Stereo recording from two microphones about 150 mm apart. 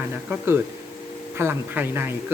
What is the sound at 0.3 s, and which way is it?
Speech, 15° right (ahead or behind).